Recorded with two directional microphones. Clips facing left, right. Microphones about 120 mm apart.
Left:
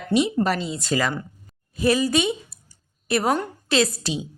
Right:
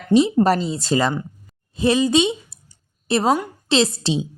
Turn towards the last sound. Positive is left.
turn(degrees=-25)  # may be behind; listen again after turning